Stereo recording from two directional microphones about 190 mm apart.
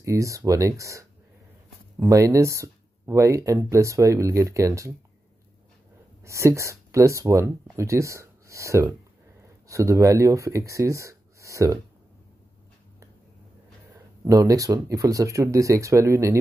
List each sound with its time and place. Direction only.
0.0 s speech: 15° right (ahead or behind)
6.2 s speech: 15° right (ahead or behind)
13.9 s speech: 15° right (ahead or behind)